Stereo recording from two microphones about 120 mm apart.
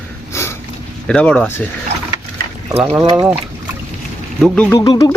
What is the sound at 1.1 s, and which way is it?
Speech, 10° left (ahead or behind).